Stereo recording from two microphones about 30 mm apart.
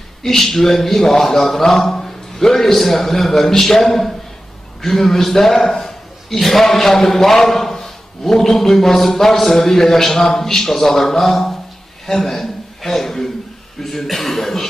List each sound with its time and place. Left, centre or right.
0.2 s a man's voice: centre